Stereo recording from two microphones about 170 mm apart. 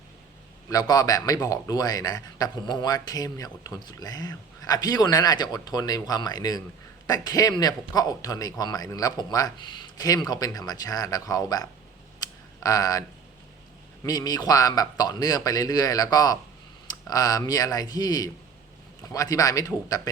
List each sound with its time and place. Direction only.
0.7 s a man's voice: 25° left (ahead or behind)
12.2 s a sound: 20° left (ahead or behind)
14.0 s a man's voice: 25° left (ahead or behind)